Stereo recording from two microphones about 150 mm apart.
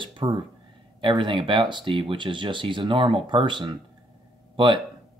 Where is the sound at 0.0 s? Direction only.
35° right (ahead or behind).